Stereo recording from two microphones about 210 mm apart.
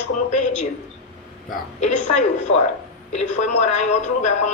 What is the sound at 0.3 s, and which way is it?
Speech, 35° left (ahead or behind).